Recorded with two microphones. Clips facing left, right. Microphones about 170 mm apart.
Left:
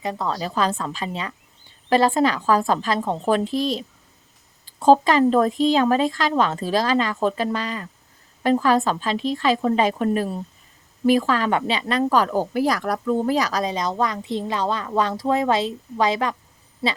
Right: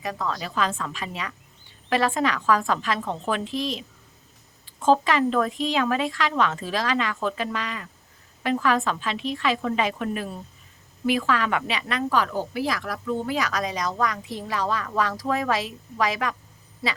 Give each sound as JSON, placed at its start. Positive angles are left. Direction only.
{"t": 0.0, "sound": "speech", "side_deg": 30}